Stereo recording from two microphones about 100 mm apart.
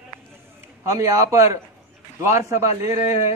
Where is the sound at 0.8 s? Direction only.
35° right (ahead or behind).